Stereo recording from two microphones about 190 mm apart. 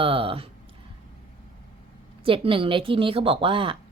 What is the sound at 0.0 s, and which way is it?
Speech, 30° right (ahead or behind).